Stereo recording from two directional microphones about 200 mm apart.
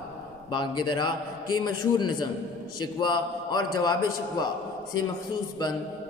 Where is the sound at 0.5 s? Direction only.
25° left (ahead or behind).